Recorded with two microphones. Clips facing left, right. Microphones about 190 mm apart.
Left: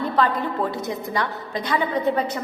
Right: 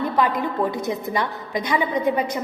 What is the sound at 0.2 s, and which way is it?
A woman's voice, 15° right (ahead or behind).